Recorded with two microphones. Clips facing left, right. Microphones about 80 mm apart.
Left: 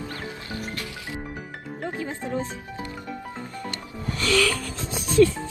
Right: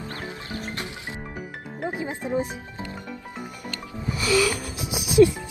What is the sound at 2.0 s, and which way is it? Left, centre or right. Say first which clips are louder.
Speech: right 3 dB; centre.